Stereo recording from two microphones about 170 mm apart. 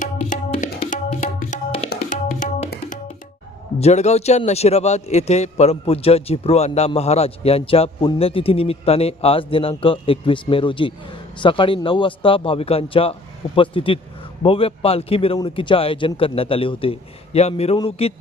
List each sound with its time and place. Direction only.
0.0 s music: 50° left (ahead or behind)
0.6 s tabla: 50° left (ahead or behind)
3.8 s a man's voice: 40° left (ahead or behind)